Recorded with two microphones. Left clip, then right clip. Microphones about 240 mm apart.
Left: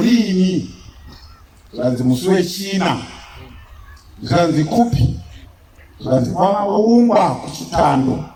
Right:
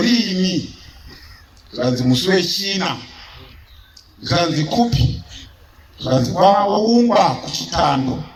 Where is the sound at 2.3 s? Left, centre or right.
Right.